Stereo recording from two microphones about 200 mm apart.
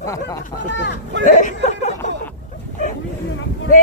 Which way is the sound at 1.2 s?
40° left (ahead or behind).